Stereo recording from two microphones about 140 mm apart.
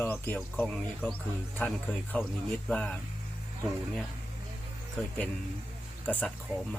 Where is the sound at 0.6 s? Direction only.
5° left (ahead or behind).